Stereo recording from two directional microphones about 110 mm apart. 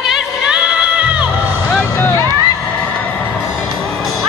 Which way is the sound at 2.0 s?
20° left (ahead or behind).